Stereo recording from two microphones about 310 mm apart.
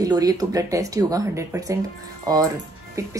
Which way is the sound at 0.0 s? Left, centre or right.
Centre.